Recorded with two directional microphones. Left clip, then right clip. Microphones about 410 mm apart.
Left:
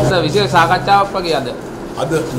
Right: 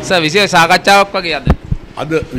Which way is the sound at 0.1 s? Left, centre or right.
Right.